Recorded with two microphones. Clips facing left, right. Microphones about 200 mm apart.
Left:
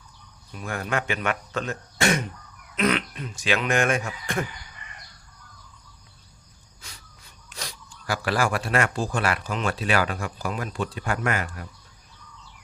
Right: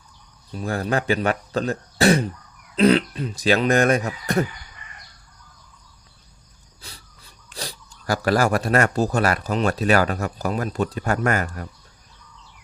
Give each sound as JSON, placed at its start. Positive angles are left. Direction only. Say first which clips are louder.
{"t": 0.5, "sound": "speech", "louder": "right 5 dB", "side_deg": -35}
{"t": 6.8, "sound": "wheeze", "louder": "right 4 dB", "side_deg": -35}
{"t": 7.5, "sound": "speech", "louder": "right 4 dB", "side_deg": -35}